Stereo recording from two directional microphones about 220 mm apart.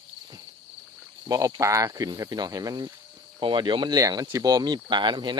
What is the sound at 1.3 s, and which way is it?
Speech, 15° right (ahead or behind).